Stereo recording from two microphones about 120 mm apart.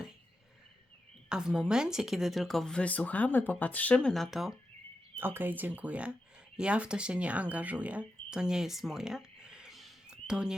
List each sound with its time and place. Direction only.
1.3 s speech: 5° right (ahead or behind)
5.1 s speech: 15° right (ahead or behind)